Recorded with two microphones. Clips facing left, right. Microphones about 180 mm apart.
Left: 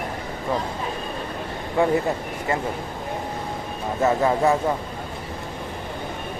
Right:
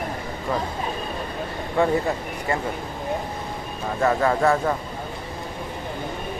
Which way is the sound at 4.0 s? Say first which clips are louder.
Even; 15° left (ahead or behind).